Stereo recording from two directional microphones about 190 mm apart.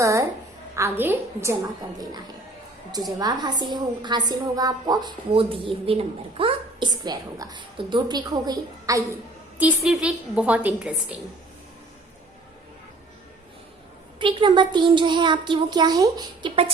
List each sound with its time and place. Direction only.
0.0 s a sound: 15° right (ahead or behind)
0.8 s a woman's voice: 10° right (ahead or behind)
9.6 s a woman's voice: 5° right (ahead or behind)
14.2 s a woman's voice: 25° right (ahead or behind)